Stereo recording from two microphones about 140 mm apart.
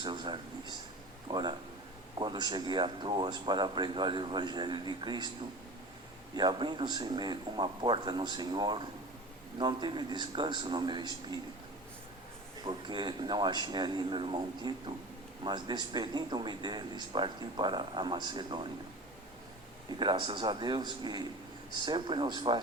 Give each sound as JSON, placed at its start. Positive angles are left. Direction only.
{"t": 0.0, "sound": "speech", "side_deg": -35}
{"t": 6.3, "sound": "speech", "side_deg": -30}
{"t": 12.6, "sound": "speech", "side_deg": -35}
{"t": 20.0, "sound": "speech", "side_deg": -35}